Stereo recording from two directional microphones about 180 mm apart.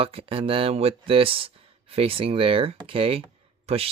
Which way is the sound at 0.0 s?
30° right (ahead or behind).